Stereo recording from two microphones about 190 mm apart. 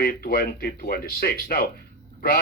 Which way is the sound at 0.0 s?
55° left (ahead or behind).